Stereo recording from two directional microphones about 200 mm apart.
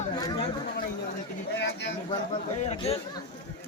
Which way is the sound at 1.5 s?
60° left (ahead or behind).